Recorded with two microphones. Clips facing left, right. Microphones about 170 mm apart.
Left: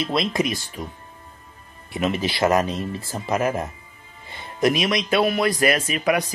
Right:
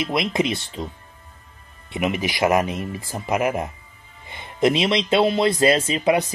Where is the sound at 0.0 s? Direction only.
20° right (ahead or behind).